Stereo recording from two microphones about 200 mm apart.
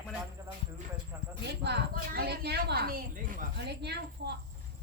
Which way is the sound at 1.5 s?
55° right (ahead or behind).